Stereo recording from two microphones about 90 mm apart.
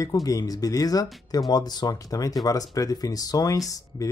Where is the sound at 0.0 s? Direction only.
40° left (ahead or behind).